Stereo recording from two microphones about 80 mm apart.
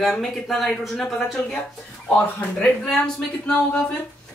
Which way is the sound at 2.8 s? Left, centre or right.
Centre.